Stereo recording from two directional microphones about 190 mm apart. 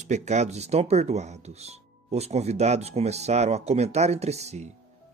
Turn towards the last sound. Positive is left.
turn(degrees=-35)  # may be behind; listen again after turning